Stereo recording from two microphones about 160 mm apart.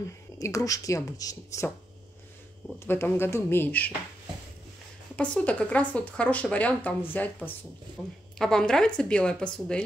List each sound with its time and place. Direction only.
0.4 s speech: 20° left (ahead or behind)
2.8 s speech: 15° left (ahead or behind)
5.1 s a woman's voice: 5° left (ahead or behind)